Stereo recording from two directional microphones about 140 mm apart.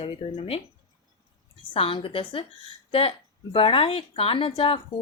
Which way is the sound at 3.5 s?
40° left (ahead or behind).